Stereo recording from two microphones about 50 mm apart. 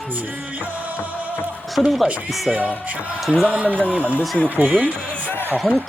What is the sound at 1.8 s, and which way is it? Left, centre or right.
Speech, centre.